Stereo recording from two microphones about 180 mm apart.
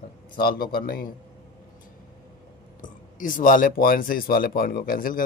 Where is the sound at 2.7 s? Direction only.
50° left (ahead or behind).